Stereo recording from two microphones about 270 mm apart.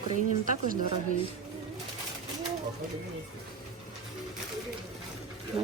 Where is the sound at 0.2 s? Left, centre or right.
Right.